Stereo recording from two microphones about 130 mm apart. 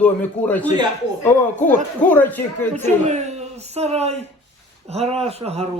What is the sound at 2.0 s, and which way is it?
Speech, 15° left (ahead or behind).